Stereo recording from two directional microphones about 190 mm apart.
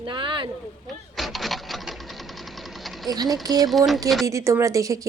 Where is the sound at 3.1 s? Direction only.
20° right (ahead or behind).